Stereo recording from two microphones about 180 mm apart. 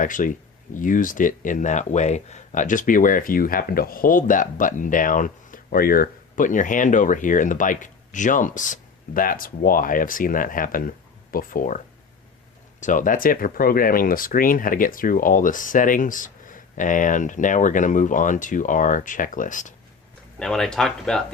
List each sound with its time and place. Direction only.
0.0 s speech: 45° left (ahead or behind)
12.8 s speech: 45° left (ahead or behind)
20.4 s speech: 5° left (ahead or behind)